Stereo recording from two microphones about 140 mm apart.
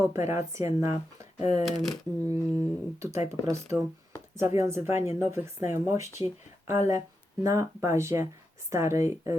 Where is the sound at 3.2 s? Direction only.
20° right (ahead or behind).